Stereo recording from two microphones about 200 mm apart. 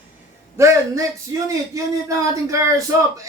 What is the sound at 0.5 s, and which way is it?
Speech, 15° right (ahead or behind).